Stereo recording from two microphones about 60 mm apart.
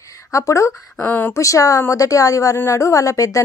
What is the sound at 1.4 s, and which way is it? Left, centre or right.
A woman's voice, left.